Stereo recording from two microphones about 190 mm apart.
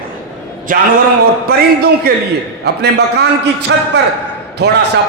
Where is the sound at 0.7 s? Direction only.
45° right (ahead or behind).